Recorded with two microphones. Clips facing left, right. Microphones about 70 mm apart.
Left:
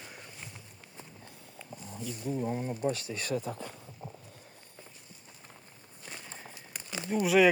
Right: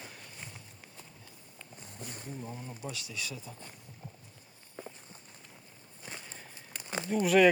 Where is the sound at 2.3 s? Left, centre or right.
Left.